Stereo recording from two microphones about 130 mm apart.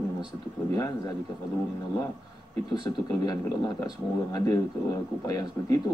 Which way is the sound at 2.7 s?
30° left (ahead or behind).